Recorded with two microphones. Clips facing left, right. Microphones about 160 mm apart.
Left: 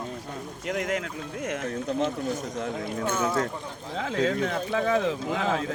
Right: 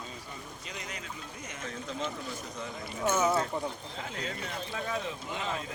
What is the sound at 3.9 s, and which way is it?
Speech, 90° left.